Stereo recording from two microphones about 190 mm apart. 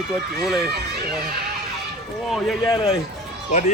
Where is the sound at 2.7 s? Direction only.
15° left (ahead or behind).